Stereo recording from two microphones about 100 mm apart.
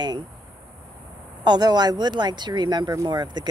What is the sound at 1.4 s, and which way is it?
Speech, 45° right (ahead or behind).